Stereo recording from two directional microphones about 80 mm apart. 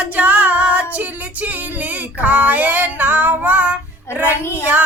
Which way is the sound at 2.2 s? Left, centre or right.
Centre.